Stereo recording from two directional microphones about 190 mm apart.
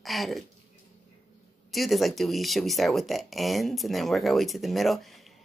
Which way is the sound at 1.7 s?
Centre (ahead or behind).